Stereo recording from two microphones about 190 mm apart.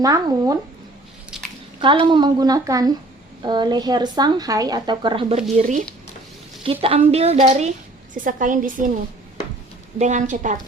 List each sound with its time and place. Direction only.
0.0 s a woman's voice: 20° right (ahead or behind)
1.3 s a sound: 5° right (ahead or behind)
1.8 s a woman's voice: 25° right (ahead or behind)
5.4 s a woman's voice: 40° right (ahead or behind)
6.7 s a woman's voice: 30° right (ahead or behind)
8.1 s a woman's voice: 45° right (ahead or behind)
10.0 s a woman's voice: 40° right (ahead or behind)